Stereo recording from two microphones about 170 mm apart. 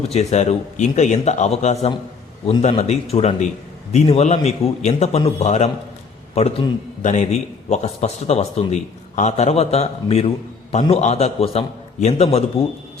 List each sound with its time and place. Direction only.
0.1 s a man's voice: 40° left (ahead or behind)